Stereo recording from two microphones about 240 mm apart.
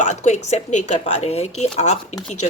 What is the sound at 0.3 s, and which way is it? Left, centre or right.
Speech, left.